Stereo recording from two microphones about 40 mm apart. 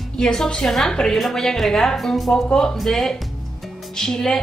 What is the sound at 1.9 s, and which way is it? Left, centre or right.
Speech, centre.